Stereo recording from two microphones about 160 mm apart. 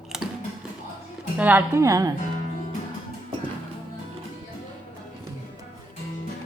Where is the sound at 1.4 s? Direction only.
10° right (ahead or behind).